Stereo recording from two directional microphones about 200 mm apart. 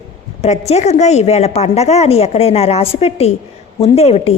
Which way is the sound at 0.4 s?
35° left (ahead or behind).